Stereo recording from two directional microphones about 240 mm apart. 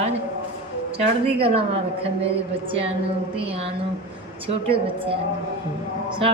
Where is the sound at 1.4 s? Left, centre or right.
Right.